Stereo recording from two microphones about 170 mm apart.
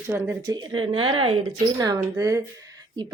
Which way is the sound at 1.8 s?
20° right (ahead or behind).